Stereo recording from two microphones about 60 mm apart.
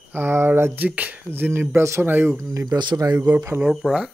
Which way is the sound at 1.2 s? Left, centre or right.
Right.